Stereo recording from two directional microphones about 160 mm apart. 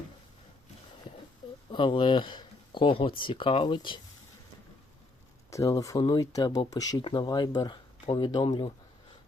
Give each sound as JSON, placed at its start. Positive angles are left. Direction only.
{"t": 1.7, "sound": "speech", "side_deg": 30}
{"t": 5.5, "sound": "speech", "side_deg": 20}